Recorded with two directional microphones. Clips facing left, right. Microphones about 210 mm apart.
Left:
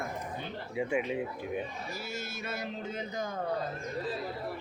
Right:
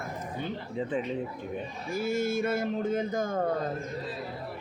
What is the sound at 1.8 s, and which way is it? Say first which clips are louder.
Speech: right 11 dB; 50° right (ahead or behind).